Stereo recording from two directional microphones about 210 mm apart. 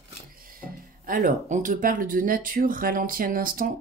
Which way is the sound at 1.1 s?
40° right (ahead or behind).